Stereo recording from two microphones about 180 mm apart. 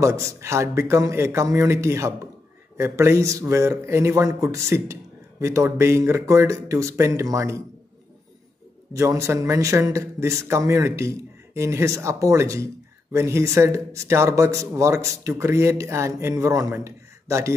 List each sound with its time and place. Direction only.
0.0 s a man's voice: 15° right (ahead or behind)
8.9 s a man's voice: 15° right (ahead or behind)